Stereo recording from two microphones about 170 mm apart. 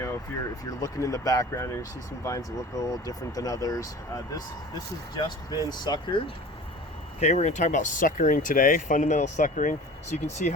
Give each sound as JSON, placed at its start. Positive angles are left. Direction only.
{"t": 0.8, "sound": "speech", "side_deg": 20}
{"t": 7.2, "sound": "speech", "side_deg": 40}